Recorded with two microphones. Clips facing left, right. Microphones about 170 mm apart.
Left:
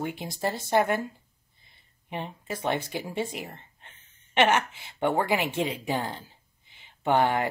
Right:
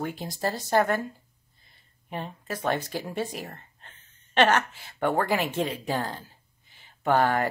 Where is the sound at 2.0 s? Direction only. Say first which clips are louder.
Even; 20° left (ahead or behind).